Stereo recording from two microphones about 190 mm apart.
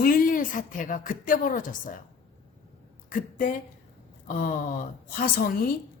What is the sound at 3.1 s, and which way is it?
Speech, 45° left (ahead or behind).